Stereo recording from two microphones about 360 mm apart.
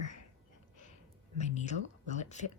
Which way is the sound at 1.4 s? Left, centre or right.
Centre.